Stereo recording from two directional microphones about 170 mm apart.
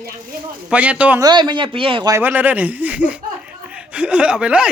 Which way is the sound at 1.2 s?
25° right (ahead or behind).